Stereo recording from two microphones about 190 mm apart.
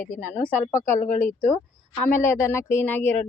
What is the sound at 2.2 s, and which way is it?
Speech, 15° left (ahead or behind).